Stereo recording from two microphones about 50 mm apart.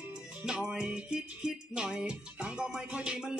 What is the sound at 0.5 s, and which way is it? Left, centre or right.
Music, centre.